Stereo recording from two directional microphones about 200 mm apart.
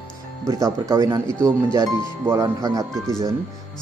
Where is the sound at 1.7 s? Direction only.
15° right (ahead or behind).